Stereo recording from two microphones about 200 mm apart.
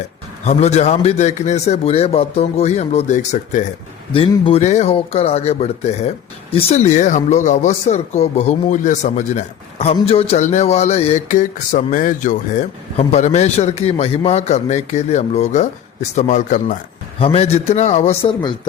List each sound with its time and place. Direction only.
0.4 s speech: 35° left (ahead or behind)